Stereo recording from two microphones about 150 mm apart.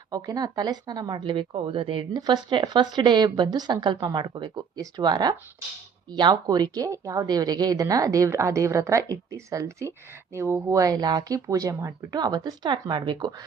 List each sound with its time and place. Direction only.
0.1 s speech: 25° right (ahead or behind)